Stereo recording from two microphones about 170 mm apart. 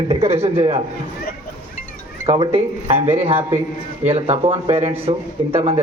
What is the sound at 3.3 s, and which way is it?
Speech, 15° right (ahead or behind).